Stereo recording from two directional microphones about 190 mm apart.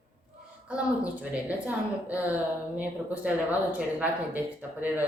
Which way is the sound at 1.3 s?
5° right (ahead or behind).